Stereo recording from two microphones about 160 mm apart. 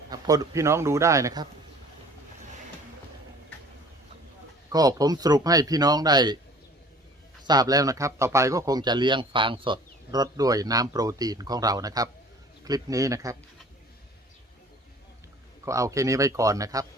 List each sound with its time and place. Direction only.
0.1 s speech: 20° right (ahead or behind)
4.7 s speech: 25° right (ahead or behind)
7.4 s speech: 25° right (ahead or behind)
15.6 s speech: 20° right (ahead or behind)